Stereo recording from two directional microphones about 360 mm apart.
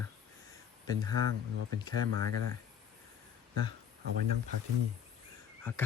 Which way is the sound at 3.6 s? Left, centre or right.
Right.